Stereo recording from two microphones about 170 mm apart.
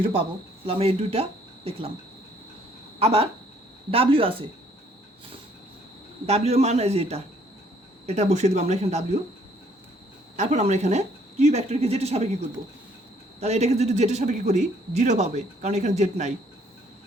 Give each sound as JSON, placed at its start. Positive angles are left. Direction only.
{"t": 0.0, "sound": "speech", "side_deg": -30}
{"t": 3.0, "sound": "a man's voice", "side_deg": -35}
{"t": 6.2, "sound": "a man's voice", "side_deg": -40}
{"t": 10.3, "sound": "a man's voice", "side_deg": -40}
{"t": 13.4, "sound": "a man's voice", "side_deg": -40}